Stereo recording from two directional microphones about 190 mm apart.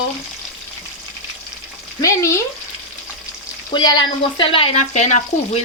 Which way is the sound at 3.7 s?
20° left (ahead or behind).